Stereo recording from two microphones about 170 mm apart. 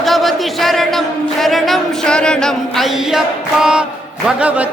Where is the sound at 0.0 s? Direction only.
Centre (ahead or behind).